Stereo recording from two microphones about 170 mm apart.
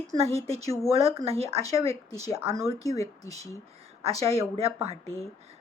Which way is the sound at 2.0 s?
20° left (ahead or behind).